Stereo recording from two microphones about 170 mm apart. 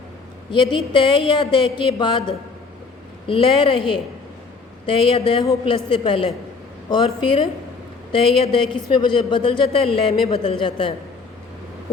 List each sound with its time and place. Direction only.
0.5 s a woman's voice: 30° left (ahead or behind)
8.1 s a woman's voice: 30° left (ahead or behind)